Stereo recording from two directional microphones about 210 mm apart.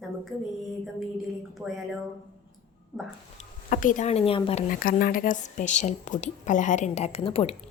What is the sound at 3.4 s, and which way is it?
Speech, 40° left (ahead or behind).